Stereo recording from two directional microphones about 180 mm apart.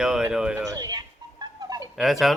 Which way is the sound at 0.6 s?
20° right (ahead or behind).